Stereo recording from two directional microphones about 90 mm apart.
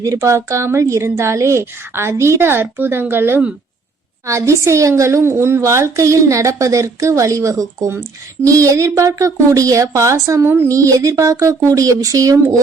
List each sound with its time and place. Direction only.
0.0 s a woman's voice: 35° right (ahead or behind)
10.7 s a woman's voice: 35° right (ahead or behind)